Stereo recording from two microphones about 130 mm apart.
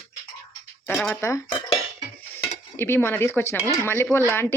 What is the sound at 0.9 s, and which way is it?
Speech, 15° left (ahead or behind).